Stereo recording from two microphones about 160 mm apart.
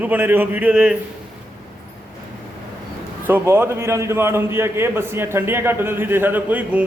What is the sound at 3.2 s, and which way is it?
A man's voice, 15° right (ahead or behind).